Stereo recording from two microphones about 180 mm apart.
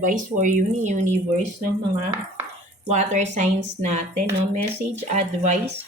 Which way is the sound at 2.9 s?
40° right (ahead or behind).